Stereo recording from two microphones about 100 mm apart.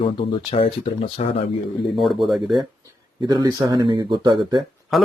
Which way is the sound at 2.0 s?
Centre (ahead or behind).